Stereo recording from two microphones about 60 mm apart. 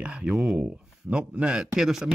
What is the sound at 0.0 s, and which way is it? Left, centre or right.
A man's voice, right.